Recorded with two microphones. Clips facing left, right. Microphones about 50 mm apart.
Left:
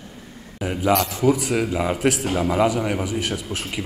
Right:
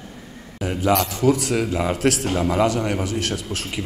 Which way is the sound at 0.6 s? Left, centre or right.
Centre.